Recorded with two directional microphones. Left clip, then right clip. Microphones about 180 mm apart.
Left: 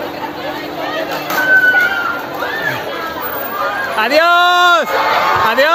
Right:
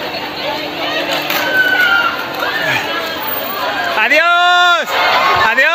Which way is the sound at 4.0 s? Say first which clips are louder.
Even; 10° left (ahead or behind).